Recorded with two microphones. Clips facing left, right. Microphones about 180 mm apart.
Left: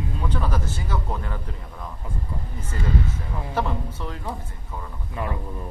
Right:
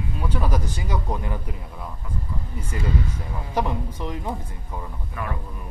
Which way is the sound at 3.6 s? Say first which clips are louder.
Right 2 dB; 15° right (ahead or behind).